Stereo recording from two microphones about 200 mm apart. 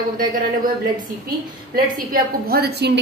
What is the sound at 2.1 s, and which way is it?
Speech, 50° right (ahead or behind).